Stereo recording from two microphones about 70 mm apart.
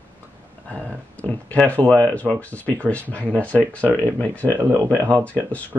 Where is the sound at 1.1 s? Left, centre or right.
Centre.